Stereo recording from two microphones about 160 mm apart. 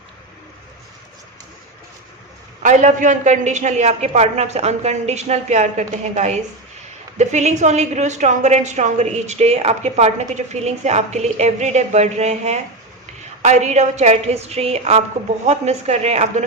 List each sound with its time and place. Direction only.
2.6 s a woman's voice: 50° right (ahead or behind)